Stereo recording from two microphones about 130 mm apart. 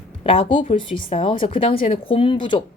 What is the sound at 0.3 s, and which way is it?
A woman's voice, 45° left (ahead or behind).